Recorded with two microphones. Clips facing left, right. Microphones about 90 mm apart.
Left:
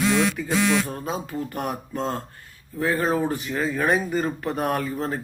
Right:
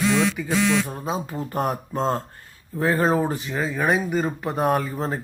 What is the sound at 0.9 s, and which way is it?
Speech, 20° right (ahead or behind).